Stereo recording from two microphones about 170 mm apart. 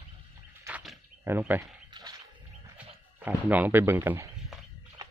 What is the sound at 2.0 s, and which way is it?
Bird, 25° right (ahead or behind).